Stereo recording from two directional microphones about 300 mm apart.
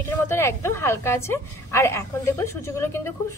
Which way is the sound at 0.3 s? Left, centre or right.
Centre.